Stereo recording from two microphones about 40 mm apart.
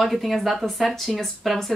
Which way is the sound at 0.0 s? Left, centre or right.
Centre.